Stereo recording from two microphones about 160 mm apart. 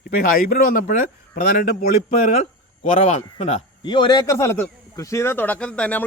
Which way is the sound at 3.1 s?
45° left (ahead or behind).